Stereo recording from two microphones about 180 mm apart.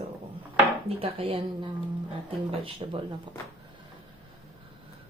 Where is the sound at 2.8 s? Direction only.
30° right (ahead or behind).